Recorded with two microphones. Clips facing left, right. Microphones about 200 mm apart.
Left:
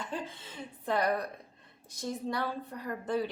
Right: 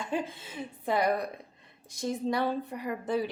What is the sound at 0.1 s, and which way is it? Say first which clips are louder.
A woman's voice: right 6 dB; 10° right (ahead or behind).